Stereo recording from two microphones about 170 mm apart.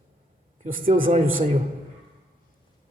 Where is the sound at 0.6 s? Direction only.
55° right (ahead or behind).